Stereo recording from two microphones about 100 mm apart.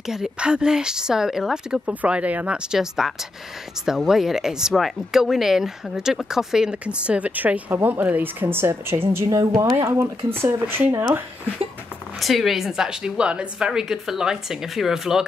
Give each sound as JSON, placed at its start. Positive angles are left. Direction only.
{"t": 0.0, "sound": "speech", "side_deg": -5}
{"t": 9.1, "sound": "speech", "side_deg": -35}
{"t": 9.8, "sound": "speech", "side_deg": -25}
{"t": 12.2, "sound": "a woman's voice", "side_deg": 0}